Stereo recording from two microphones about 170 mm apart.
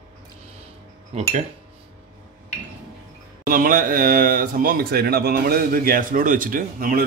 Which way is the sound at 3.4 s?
55° right (ahead or behind).